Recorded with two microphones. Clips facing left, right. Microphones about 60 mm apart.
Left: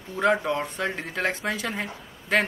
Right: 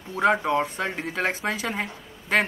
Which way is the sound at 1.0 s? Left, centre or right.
Centre.